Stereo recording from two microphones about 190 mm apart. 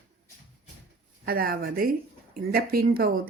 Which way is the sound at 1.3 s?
50° right (ahead or behind).